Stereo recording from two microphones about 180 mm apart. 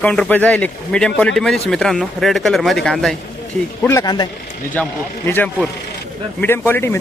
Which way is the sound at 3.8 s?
15° left (ahead or behind).